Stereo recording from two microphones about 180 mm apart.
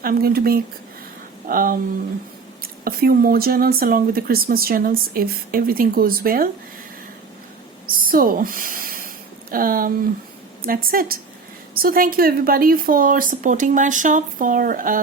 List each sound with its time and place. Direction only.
0.0 s speech: 55° right (ahead or behind)
2.8 s speech: 55° right (ahead or behind)
7.9 s a sound: 50° right (ahead or behind)
9.5 s speech: 50° right (ahead or behind)